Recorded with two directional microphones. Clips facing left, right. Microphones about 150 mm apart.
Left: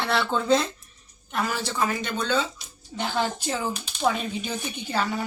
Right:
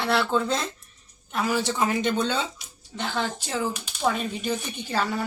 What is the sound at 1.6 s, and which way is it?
Speech, 20° right (ahead or behind).